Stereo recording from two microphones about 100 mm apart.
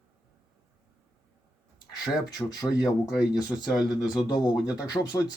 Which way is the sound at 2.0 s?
40° left (ahead or behind).